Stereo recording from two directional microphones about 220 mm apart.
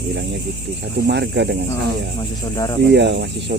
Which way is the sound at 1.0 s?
50° right (ahead or behind).